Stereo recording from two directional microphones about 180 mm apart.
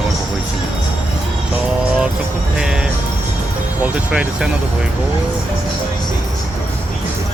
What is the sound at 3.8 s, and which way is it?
Speech, 5° right (ahead or behind).